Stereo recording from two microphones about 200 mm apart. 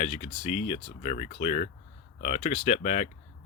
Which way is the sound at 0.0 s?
35° left (ahead or behind).